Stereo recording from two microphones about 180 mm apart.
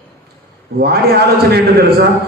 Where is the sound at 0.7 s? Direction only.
60° right (ahead or behind).